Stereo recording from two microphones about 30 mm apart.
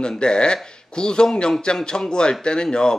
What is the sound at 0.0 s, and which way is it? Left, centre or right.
A man's voice, left.